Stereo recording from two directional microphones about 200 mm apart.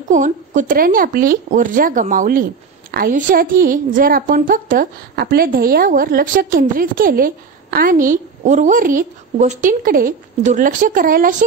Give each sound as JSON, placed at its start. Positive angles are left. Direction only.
{"t": 0.1, "sound": "a woman's voice", "side_deg": -40}